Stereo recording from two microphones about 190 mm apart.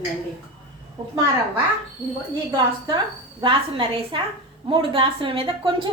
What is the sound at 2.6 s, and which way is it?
A woman's voice, 25° right (ahead or behind).